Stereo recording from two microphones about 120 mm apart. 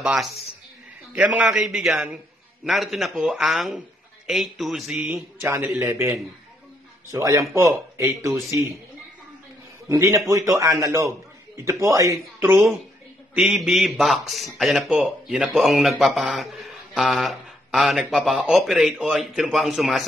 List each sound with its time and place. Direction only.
0.0 s a man's voice: 5° right (ahead or behind)
5.4 s a man's voice: 20° right (ahead or behind)
9.8 s a man's voice: 25° right (ahead or behind)
13.3 s a man's voice: 5° right (ahead or behind)